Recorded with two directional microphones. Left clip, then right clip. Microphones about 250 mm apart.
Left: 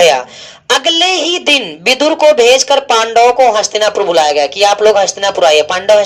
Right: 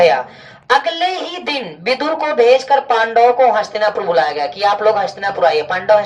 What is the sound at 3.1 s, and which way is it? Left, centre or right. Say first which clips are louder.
Music: left 3 dB; left.